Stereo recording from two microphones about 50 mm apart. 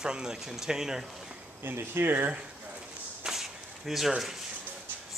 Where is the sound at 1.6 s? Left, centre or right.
Right.